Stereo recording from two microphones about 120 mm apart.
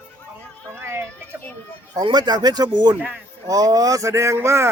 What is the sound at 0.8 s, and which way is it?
Run, 20° right (ahead or behind).